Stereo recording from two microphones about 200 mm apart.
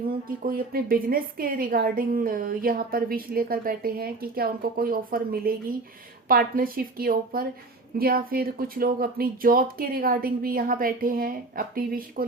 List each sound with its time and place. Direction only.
0.3 s a woman's voice: 45° right (ahead or behind)